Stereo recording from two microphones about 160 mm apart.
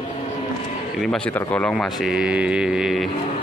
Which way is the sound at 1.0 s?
5° left (ahead or behind).